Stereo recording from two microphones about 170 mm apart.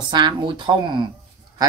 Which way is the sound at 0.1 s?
30° right (ahead or behind).